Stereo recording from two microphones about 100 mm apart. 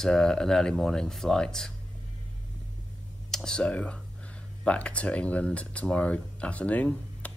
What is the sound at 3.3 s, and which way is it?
Speech, 5° left (ahead or behind).